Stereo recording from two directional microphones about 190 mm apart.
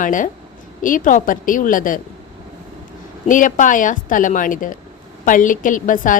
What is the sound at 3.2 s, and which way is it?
A woman's voice, 45° left (ahead or behind).